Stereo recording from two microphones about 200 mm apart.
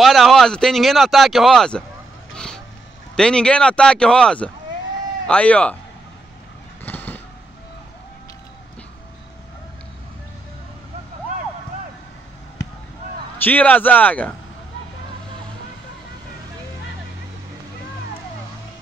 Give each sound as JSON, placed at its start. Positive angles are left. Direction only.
{"t": 0.0, "sound": "speech", "side_deg": 0}
{"t": 2.3, "sound": "vehicle", "side_deg": 5}
{"t": 3.2, "sound": "speech", "side_deg": 5}
{"t": 6.8, "sound": "vehicle", "side_deg": 10}
{"t": 13.4, "sound": "a man's voice", "side_deg": 10}